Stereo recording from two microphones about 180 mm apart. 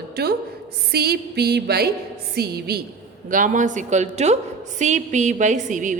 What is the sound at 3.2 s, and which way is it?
A woman's voice, 45° right (ahead or behind).